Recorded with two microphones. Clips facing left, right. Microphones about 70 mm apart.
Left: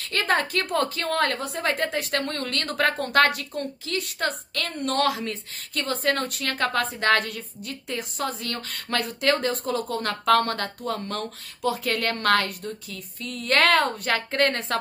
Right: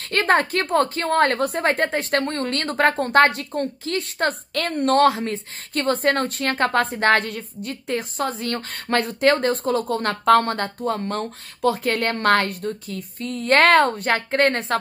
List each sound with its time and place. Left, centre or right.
0.0 s a woman's voice: right